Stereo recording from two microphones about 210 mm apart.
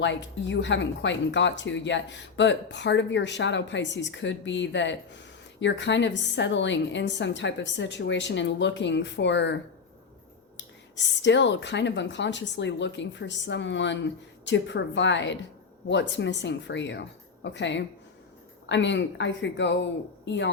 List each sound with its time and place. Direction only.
0.0 s a woman's voice: 60° left (ahead or behind)
10.9 s a woman's voice: 60° left (ahead or behind)